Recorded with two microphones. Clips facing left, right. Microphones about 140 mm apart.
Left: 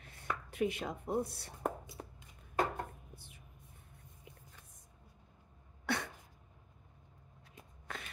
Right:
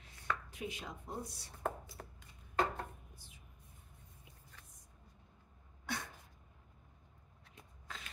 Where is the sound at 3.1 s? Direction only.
60° left (ahead or behind).